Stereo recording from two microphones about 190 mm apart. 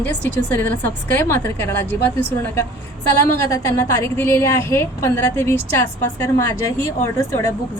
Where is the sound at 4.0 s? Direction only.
15° left (ahead or behind).